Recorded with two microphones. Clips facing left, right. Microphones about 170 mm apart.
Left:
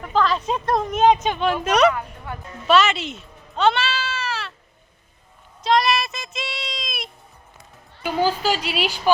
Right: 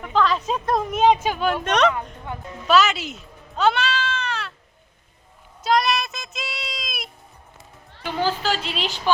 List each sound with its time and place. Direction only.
0.0 s a woman's voice: centre (ahead or behind)
2.3 s a woman's voice: 20° right (ahead or behind)
2.6 s speech: centre (ahead or behind)
5.6 s a child's voice: centre (ahead or behind)
8.0 s a woman's voice: 10° left (ahead or behind)